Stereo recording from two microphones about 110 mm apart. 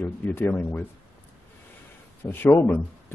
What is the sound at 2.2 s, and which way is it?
Speech, 20° left (ahead or behind).